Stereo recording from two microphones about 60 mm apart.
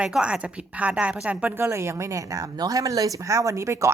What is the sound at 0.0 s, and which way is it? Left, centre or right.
Speech, centre.